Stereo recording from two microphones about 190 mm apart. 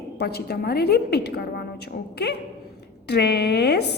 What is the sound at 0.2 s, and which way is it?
A woman's voice, 55° left (ahead or behind).